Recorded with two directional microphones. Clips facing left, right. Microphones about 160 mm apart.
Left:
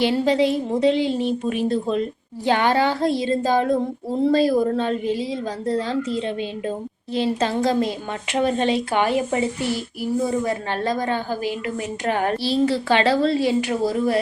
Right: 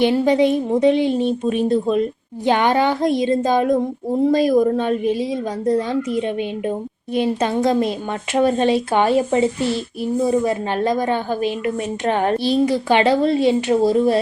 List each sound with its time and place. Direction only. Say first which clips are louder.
0.0 s speech: right 3 dB; 20° right (ahead or behind)